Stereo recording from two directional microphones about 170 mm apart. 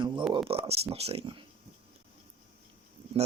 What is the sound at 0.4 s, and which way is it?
Speech, 35° right (ahead or behind).